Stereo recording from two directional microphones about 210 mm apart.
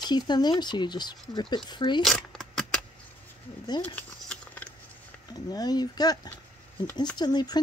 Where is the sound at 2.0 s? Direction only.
Centre (ahead or behind).